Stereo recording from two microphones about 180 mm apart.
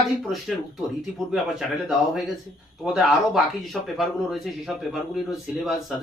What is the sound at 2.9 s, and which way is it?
A man's voice, centre (ahead or behind).